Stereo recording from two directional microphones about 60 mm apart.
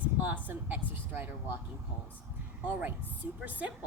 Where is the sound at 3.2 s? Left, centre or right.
Right.